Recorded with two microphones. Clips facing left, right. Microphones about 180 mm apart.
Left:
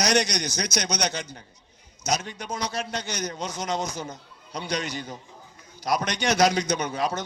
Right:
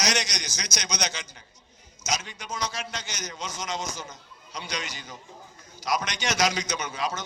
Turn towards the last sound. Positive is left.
turn(degrees=60)  # may be behind; listen again after turning